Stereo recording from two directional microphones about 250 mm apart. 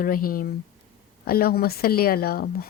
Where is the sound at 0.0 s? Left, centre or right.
Left.